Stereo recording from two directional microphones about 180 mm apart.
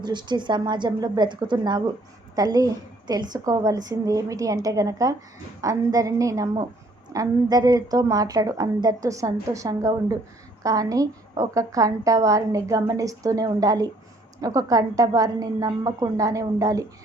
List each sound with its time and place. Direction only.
0.0 s a woman's voice: 25° right (ahead or behind)